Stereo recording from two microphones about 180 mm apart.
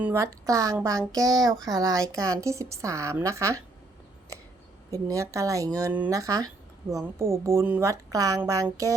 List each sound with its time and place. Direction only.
0.0 s a woman's voice: 15° right (ahead or behind)
4.9 s a woman's voice: 20° right (ahead or behind)